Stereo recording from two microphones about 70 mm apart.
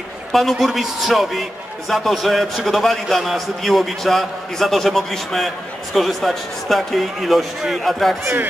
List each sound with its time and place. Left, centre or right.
0.3 s a man's voice: centre
8.2 s speech: right